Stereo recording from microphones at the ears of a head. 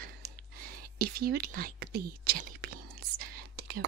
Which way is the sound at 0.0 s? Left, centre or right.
Right.